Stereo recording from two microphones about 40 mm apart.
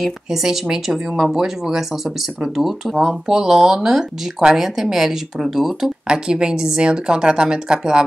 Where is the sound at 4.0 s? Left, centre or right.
Centre.